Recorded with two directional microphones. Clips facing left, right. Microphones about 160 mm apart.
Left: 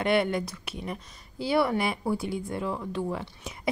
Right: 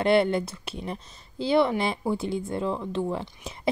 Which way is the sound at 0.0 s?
30° right (ahead or behind).